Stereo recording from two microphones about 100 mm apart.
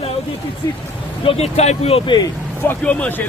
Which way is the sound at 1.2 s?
85° left.